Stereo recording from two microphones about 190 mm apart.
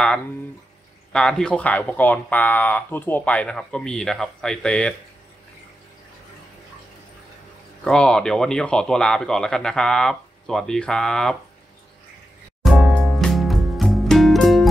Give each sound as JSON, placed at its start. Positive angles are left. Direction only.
{"t": 1.1, "sound": "speech", "side_deg": 5}
{"t": 7.8, "sound": "speech", "side_deg": 5}
{"t": 12.6, "sound": "music", "side_deg": 0}